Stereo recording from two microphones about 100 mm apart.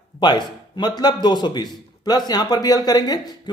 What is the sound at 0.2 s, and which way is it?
Speech, 45° left (ahead or behind).